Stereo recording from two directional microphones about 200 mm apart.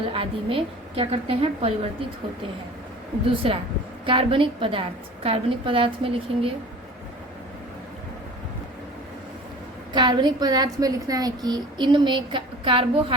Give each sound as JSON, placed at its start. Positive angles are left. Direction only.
{"t": 0.1, "sound": "a woman's voice", "side_deg": -25}
{"t": 3.2, "sound": "a woman's voice", "side_deg": -25}
{"t": 9.9, "sound": "a woman's voice", "side_deg": -20}